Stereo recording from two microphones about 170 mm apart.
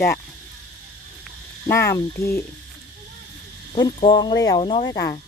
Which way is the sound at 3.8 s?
25° left (ahead or behind).